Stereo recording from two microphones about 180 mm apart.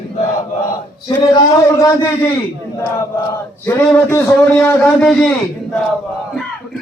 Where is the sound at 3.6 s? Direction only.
10° left (ahead or behind).